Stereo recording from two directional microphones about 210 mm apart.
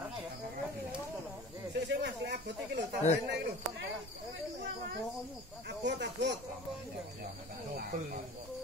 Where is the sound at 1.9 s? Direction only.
55° right (ahead or behind).